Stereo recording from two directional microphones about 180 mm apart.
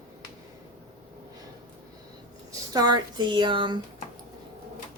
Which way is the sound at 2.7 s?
20° right (ahead or behind).